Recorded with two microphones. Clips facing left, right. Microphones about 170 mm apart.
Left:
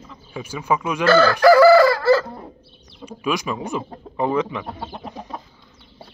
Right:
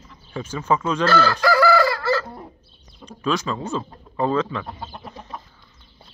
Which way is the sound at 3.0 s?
10° left (ahead or behind).